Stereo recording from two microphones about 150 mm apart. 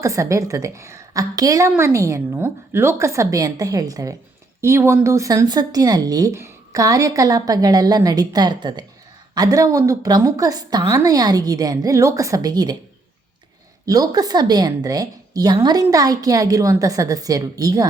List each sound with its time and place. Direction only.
0.0 s a woman's voice: 20° right (ahead or behind)
13.8 s a woman's voice: 25° right (ahead or behind)